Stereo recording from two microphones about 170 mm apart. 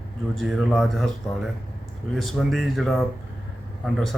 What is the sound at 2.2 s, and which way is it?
Speech, centre (ahead or behind).